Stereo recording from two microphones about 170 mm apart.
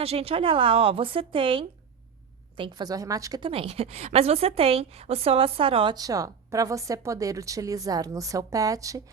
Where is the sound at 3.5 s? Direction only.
35° right (ahead or behind).